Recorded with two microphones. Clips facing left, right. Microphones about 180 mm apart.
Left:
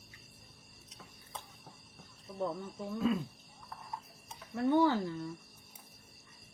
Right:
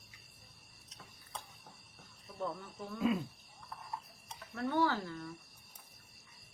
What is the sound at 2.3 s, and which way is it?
Speech, 20° left (ahead or behind).